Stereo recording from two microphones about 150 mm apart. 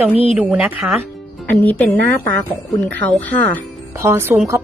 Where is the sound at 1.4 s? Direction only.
10° left (ahead or behind).